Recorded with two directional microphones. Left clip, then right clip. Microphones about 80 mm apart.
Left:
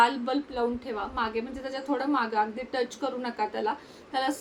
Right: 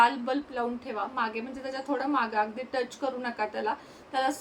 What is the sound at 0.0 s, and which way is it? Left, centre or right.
A woman's voice, centre.